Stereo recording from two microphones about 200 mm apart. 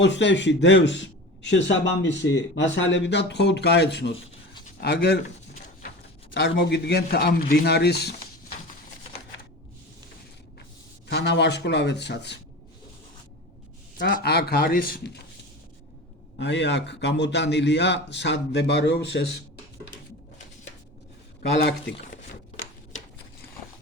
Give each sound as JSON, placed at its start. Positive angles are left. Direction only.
{"t": 0.0, "sound": "a man's voice", "side_deg": 65}
{"t": 6.3, "sound": "a man's voice", "side_deg": 60}
{"t": 11.1, "sound": "a man's voice", "side_deg": 55}
{"t": 14.0, "sound": "speech", "side_deg": 55}
{"t": 16.4, "sound": "a man's voice", "side_deg": 60}
{"t": 21.6, "sound": "a man's voice", "side_deg": 55}